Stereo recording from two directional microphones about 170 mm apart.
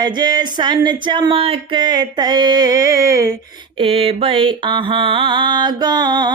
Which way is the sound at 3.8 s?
35° right (ahead or behind).